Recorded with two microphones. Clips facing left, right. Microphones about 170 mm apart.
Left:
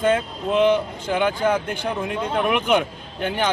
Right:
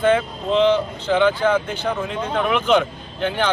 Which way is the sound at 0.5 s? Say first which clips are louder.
Right 1 dB; 10° left (ahead or behind).